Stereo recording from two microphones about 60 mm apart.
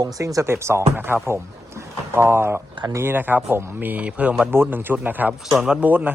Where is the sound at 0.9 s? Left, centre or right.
Right; by 4.5 s centre.